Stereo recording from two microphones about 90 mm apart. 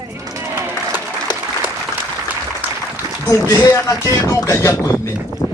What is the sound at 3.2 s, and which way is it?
A man's voice, 35° left (ahead or behind).